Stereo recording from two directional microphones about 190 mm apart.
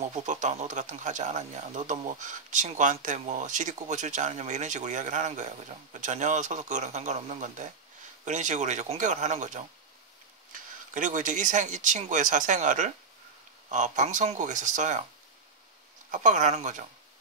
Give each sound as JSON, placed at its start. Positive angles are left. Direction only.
{"t": 0.0, "sound": "speech", "side_deg": -40}
{"t": 16.1, "sound": "speech", "side_deg": -40}